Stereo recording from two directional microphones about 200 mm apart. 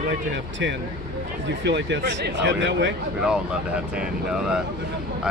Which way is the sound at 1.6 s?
60° right (ahead or behind).